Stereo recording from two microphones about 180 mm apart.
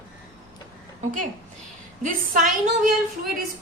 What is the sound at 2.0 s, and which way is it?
Speech, 50° right (ahead or behind).